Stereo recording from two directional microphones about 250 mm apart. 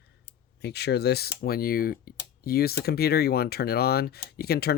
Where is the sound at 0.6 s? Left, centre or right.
Left.